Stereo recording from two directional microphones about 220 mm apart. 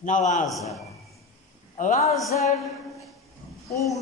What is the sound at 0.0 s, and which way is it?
Speech, 35° left (ahead or behind).